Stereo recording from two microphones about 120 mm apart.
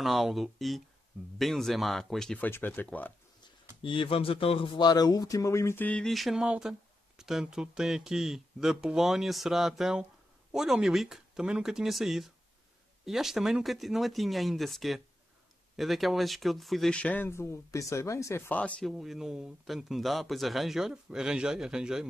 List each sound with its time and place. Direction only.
0.0 s speech: centre (ahead or behind)
2.3 s speech: 15° left (ahead or behind)
3.8 s a man's voice: 45° left (ahead or behind); by 5.9 s 25° left (ahead or behind)
5.9 s speech: 5° left (ahead or behind); by 18.4 s 25° left (ahead or behind)
18.5 s speech: 10° left (ahead or behind); by 22.0 s 5° right (ahead or behind)